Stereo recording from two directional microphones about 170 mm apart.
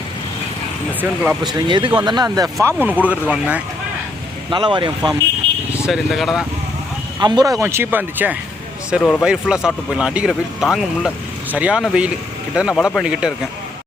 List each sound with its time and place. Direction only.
1.5 s speech: 30° right (ahead or behind); by 3.6 s 5° right (ahead or behind)
4.4 s speech: 25° right (ahead or behind)
5.9 s speech: centre (ahead or behind)
7.2 s speech: 25° right (ahead or behind)
7.6 s speech: 15° right (ahead or behind)